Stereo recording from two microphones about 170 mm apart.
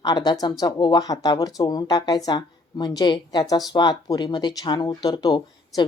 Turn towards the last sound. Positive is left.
turn(degrees=25)  # may be behind; listen again after turning